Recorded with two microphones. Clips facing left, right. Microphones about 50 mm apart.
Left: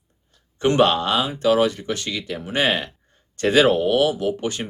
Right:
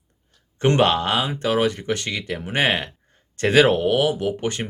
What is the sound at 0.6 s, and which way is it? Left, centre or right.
Speech, right.